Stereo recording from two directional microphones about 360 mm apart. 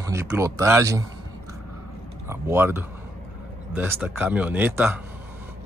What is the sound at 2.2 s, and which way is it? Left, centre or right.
Speech, centre.